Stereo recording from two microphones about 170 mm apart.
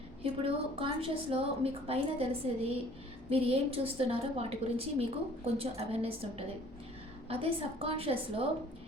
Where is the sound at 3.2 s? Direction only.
35° right (ahead or behind).